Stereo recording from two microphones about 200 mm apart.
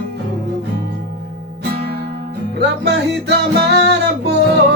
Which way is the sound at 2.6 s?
55° right (ahead or behind).